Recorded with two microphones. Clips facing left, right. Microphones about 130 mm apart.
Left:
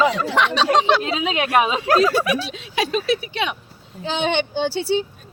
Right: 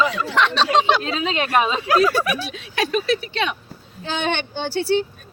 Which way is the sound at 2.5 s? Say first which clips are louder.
Even; 20° left (ahead or behind).